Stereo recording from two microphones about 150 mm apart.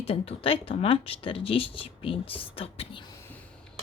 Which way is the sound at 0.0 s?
40° left (ahead or behind).